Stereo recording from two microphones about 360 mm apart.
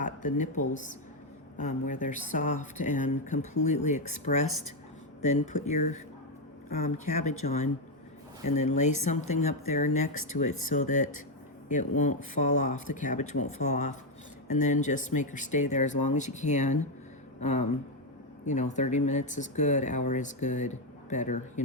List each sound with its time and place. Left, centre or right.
1.5 s speech: left